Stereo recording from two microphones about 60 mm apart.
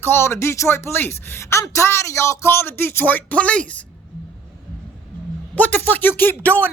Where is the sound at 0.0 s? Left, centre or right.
Left.